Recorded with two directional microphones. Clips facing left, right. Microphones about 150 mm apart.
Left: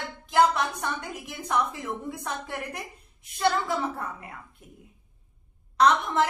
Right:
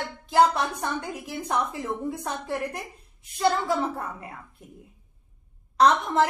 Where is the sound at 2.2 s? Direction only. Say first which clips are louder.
Right 4 dB; 35° right (ahead or behind).